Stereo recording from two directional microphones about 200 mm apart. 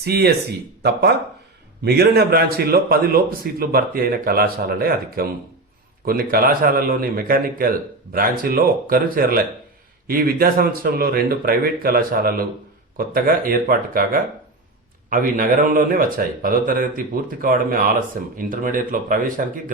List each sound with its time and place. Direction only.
0.0 s a man's voice: 55° right (ahead or behind)